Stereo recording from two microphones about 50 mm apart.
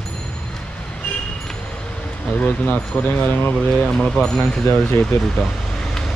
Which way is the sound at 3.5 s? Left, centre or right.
Left.